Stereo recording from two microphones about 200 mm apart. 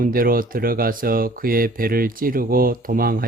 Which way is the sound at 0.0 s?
45° right (ahead or behind).